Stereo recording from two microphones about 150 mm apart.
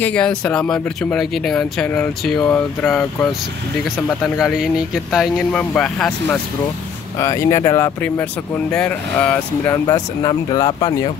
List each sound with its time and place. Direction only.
0.0 s speech: 5° left (ahead or behind)
7.2 s speech: 20° left (ahead or behind)
8.7 s speech: 10° left (ahead or behind)
9.8 s speech: 25° left (ahead or behind)